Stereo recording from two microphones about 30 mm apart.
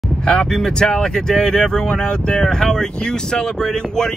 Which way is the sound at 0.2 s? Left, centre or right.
Left.